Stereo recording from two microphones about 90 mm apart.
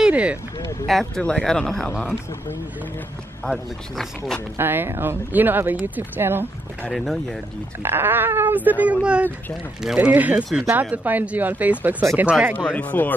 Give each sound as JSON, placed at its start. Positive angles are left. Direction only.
{"t": 0.0, "sound": "vehicle", "side_deg": -15}
{"t": 0.8, "sound": "speech", "side_deg": 5}
{"t": 1.9, "sound": "speech", "side_deg": 20}
{"t": 3.4, "sound": "speech", "side_deg": 5}
{"t": 4.6, "sound": "speech", "side_deg": -25}
{"t": 6.9, "sound": "speech", "side_deg": 0}
{"t": 7.8, "sound": "speech", "side_deg": -25}
{"t": 12.6, "sound": "speech", "side_deg": 15}